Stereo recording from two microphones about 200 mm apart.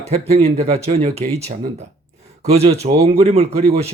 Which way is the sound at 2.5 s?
35° right (ahead or behind).